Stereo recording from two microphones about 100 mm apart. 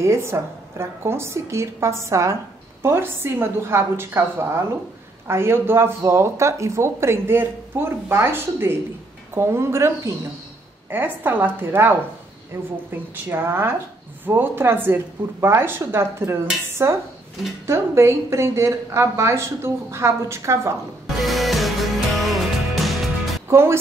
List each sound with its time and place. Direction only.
0.0 s speech: 25° right (ahead or behind)
21.2 s music: centre (ahead or behind)
23.5 s speech: 25° right (ahead or behind)